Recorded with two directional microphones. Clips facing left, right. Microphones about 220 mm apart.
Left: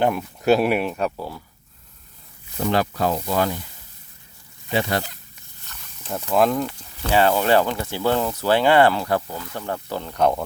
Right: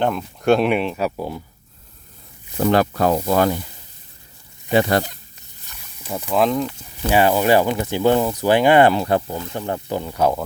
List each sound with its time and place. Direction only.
0.0 s speech: 10° left (ahead or behind)
1.1 s speech: 20° right (ahead or behind)
2.6 s speech: 55° right (ahead or behind)
4.7 s speech: 50° right (ahead or behind)
6.0 s speech: 10° right (ahead or behind)
6.3 s speech: centre (ahead or behind)
7.0 s speech: 15° right (ahead or behind)
10.0 s speech: 5° right (ahead or behind)